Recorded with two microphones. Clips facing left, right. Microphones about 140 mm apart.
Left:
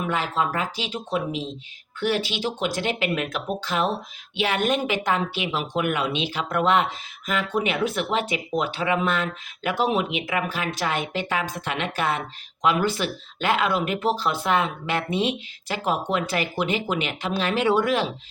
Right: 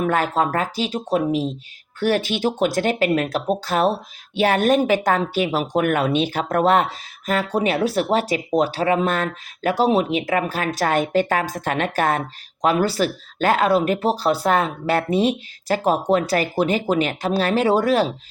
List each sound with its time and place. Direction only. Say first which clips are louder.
0.0 s speech: right 5 dB; 45° right (ahead or behind)